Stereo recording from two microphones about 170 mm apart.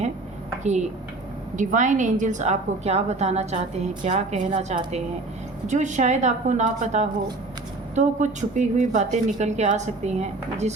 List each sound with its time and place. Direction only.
1.5 s a woman's voice: 45° right (ahead or behind)